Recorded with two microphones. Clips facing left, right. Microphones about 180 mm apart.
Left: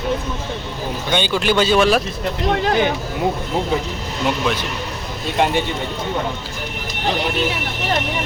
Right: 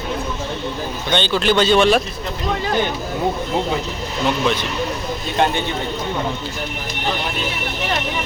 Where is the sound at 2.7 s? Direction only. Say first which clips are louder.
Left 2 dB; 65° left (ahead or behind).